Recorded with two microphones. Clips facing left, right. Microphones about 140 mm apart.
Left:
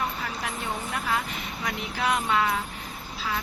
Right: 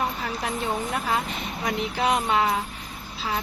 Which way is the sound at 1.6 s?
25° right (ahead or behind).